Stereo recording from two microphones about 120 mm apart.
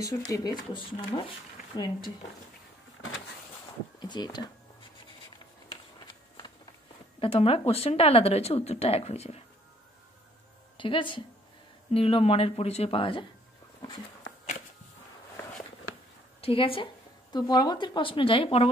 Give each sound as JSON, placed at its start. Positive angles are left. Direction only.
{"t": 0.0, "sound": "speech", "side_deg": 30}
{"t": 0.7, "sound": "a woman's voice", "side_deg": 50}
{"t": 4.0, "sound": "speech", "side_deg": 35}
{"t": 5.9, "sound": "a sound", "side_deg": 40}
{"t": 7.2, "sound": "a woman's voice", "side_deg": 50}
{"t": 10.8, "sound": "a woman's voice", "side_deg": 45}
{"t": 16.3, "sound": "a woman's voice", "side_deg": 50}